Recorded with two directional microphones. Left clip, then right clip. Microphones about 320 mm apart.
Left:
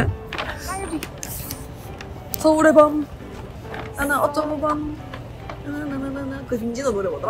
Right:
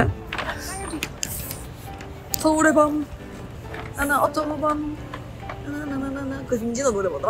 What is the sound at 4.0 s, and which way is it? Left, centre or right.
Speech, centre.